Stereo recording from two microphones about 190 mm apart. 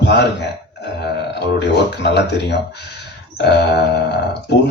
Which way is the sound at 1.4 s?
60° left (ahead or behind).